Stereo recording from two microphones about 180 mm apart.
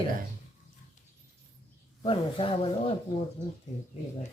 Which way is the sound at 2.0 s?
30° left (ahead or behind).